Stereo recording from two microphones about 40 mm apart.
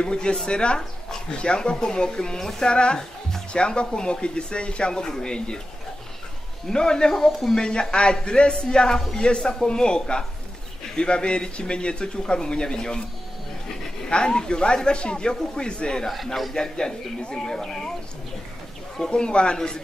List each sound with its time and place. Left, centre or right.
0.0 s speech: left
6.7 s speech: centre
14.1 s speech: left
19.0 s speech: left